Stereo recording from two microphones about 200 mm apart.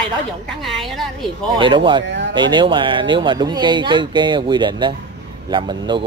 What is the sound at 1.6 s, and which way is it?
Speech, 25° right (ahead or behind).